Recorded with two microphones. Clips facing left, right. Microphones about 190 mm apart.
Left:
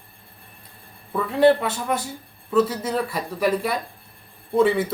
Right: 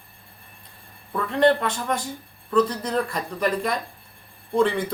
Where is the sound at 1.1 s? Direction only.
5° left (ahead or behind).